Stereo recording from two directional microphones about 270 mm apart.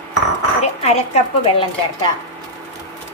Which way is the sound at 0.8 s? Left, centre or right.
Left.